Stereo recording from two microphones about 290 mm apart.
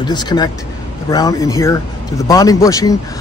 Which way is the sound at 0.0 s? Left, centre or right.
Centre.